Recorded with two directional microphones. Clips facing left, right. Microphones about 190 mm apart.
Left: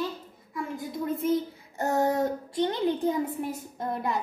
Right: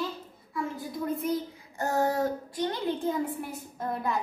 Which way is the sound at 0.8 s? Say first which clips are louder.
Left 5 dB; 25° left (ahead or behind).